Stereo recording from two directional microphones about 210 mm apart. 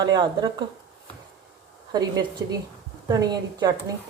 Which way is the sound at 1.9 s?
20° right (ahead or behind).